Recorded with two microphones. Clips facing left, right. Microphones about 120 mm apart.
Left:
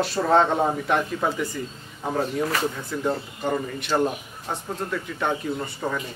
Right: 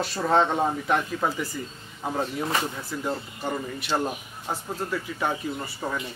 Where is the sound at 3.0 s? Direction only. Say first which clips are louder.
Left 5 dB; centre (ahead or behind).